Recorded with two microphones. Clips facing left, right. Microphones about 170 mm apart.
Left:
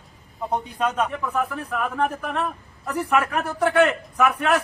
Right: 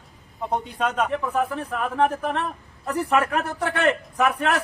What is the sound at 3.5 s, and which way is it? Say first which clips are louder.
Speech: left 6 dB; 25° right (ahead or behind).